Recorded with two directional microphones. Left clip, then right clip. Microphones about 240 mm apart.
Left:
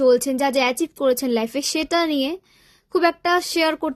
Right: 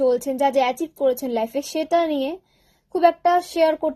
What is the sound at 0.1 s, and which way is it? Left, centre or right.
Speech, left.